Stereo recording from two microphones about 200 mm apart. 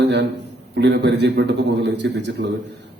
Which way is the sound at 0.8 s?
60° right (ahead or behind).